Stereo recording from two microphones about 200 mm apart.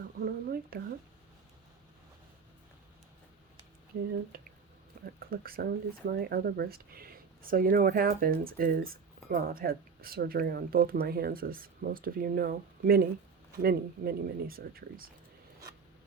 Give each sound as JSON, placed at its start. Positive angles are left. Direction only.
{"t": 0.3, "sound": "speech", "side_deg": -50}
{"t": 5.0, "sound": "speech", "side_deg": -50}